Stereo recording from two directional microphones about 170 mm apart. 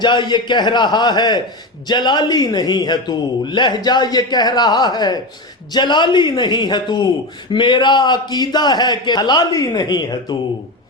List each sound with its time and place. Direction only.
0.0 s a man's voice: 25° left (ahead or behind)